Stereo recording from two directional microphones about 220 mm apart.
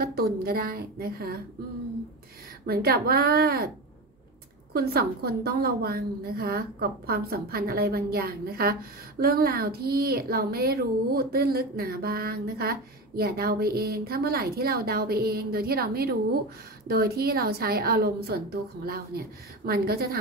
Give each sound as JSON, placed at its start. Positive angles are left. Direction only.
{"t": 0.0, "sound": "speech", "side_deg": -45}
{"t": 2.6, "sound": "speech", "side_deg": -45}
{"t": 4.7, "sound": "speech", "side_deg": -45}